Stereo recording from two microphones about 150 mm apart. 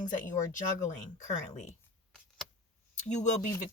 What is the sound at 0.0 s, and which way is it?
Speech, 55° left (ahead or behind).